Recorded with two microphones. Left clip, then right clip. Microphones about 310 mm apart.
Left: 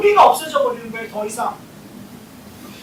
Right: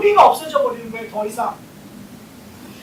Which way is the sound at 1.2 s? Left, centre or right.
Right.